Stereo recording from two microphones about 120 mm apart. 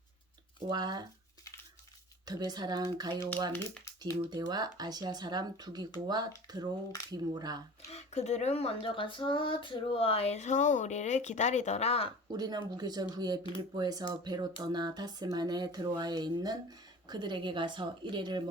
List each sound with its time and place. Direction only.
0.7 s speech: 35° right (ahead or behind)
2.2 s speech: 35° right (ahead or behind)
7.9 s speech: 65° left (ahead or behind)
12.3 s speech: 35° right (ahead or behind)